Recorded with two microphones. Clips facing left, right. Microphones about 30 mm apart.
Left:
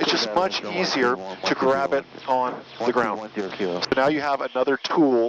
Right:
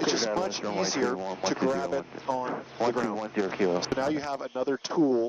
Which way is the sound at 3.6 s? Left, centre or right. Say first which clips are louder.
Left 11 dB; left.